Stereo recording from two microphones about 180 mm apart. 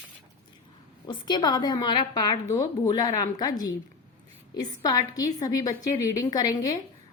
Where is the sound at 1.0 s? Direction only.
25° left (ahead or behind).